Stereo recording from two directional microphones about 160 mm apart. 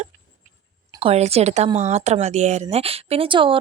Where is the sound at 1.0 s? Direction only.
40° right (ahead or behind).